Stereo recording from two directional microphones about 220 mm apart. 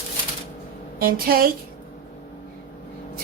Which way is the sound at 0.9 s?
45° right (ahead or behind).